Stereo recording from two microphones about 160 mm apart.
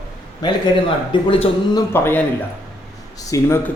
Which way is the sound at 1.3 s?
35° left (ahead or behind).